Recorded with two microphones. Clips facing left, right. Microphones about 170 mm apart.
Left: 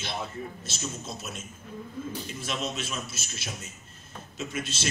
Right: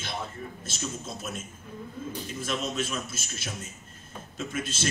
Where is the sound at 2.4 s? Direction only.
50° right (ahead or behind).